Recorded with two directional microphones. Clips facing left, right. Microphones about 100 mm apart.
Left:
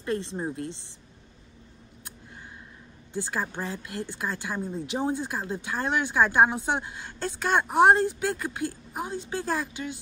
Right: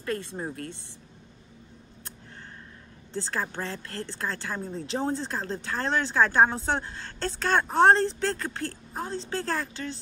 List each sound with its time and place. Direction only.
0.0 s speech: 20° left (ahead or behind)
3.1 s a woman's voice: 15° left (ahead or behind)